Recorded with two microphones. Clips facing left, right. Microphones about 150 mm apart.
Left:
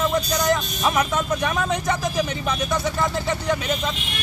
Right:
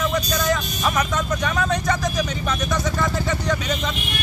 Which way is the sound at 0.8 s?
10° left (ahead or behind).